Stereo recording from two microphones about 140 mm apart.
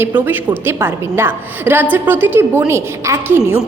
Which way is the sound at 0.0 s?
15° right (ahead or behind).